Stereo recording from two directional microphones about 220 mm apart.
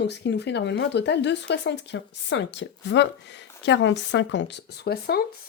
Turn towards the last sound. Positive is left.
turn(degrees=45)  # may be behind; listen again after turning